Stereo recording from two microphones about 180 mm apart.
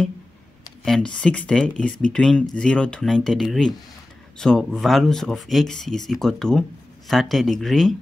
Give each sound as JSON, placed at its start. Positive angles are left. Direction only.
{"t": 0.8, "sound": "speech", "side_deg": 5}